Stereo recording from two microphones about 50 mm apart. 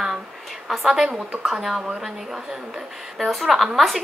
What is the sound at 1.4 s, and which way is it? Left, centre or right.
A woman's voice, centre.